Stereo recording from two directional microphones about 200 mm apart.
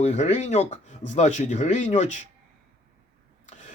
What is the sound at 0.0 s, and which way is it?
Speech, 35° left (ahead or behind).